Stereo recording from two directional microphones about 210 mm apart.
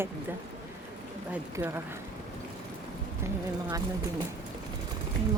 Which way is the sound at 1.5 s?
15° right (ahead or behind).